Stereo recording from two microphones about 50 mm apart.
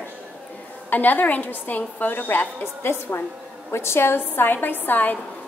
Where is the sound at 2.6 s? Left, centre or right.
Left.